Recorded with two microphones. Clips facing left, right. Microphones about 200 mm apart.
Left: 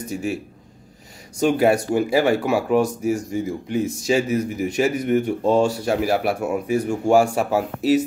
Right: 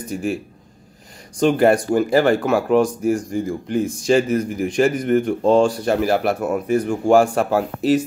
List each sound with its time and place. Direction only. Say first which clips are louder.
0.1 s speech: right 2 dB; centre (ahead or behind)
1.4 s speech: right 2 dB; 5° left (ahead or behind)